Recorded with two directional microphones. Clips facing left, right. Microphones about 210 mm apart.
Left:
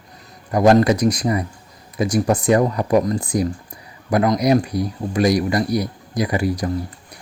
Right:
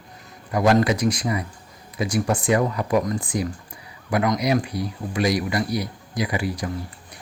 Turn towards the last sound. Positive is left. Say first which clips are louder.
# left 5 dB
turn(degrees=40)  # may be behind; listen again after turning